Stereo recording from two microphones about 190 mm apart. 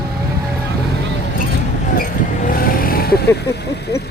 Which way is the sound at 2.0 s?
50° left (ahead or behind).